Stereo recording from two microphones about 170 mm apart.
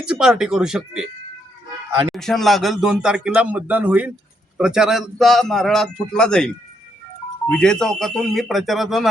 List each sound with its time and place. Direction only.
0.0 s speech: 5° right (ahead or behind)
2.1 s speech: centre (ahead or behind)